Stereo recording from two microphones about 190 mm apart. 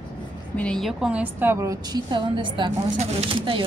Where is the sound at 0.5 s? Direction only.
5° left (ahead or behind).